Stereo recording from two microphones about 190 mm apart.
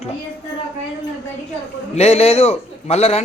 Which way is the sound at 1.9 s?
35° left (ahead or behind).